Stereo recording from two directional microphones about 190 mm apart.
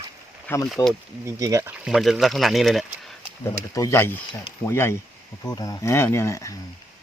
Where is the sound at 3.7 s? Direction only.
15° left (ahead or behind).